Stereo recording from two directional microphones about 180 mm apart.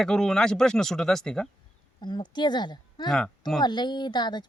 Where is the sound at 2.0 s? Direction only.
25° left (ahead or behind).